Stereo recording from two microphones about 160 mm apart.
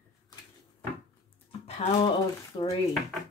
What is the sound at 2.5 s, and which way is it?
Speech, 35° left (ahead or behind).